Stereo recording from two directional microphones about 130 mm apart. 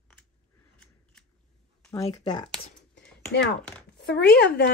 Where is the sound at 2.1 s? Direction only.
30° left (ahead or behind).